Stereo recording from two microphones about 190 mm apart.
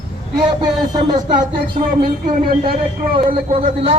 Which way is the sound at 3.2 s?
30° right (ahead or behind).